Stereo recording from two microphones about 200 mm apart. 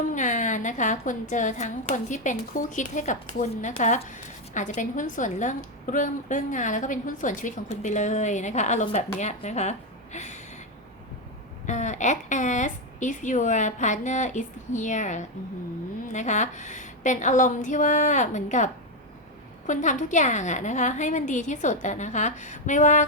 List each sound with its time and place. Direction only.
0.1 s a woman's voice: 40° left (ahead or behind)
11.6 s a woman's voice: 35° left (ahead or behind)